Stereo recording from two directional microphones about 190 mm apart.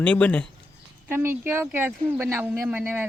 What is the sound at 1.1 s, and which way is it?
Speech, 10° right (ahead or behind).